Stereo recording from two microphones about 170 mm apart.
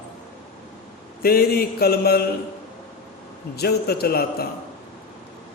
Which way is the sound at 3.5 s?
70° left (ahead or behind).